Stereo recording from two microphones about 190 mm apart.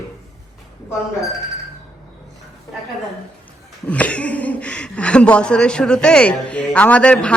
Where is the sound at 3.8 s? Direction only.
5° left (ahead or behind).